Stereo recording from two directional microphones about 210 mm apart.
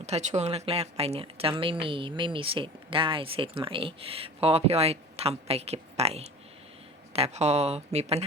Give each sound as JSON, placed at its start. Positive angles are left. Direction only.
{"t": 0.0, "sound": "speech", "side_deg": -35}